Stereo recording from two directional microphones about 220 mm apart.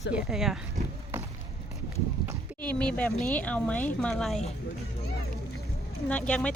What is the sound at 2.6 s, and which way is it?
Speech, 5° left (ahead or behind).